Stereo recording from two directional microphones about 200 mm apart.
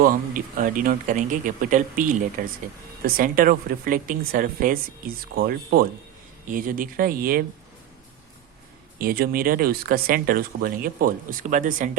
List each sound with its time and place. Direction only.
0.0 s speech: 45° right (ahead or behind)
9.0 s speech: 50° right (ahead or behind)